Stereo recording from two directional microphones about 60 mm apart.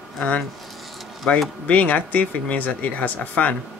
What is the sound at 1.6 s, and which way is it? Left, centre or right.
Speech, left.